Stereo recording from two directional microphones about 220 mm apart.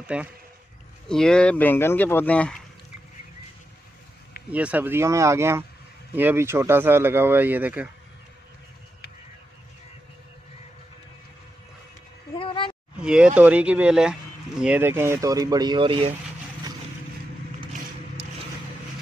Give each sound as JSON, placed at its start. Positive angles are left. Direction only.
{"t": 0.0, "sound": "speech", "side_deg": -5}
{"t": 4.5, "sound": "speech", "side_deg": -5}
{"t": 12.4, "sound": "a sound", "side_deg": 20}
{"t": 12.9, "sound": "speech", "side_deg": -5}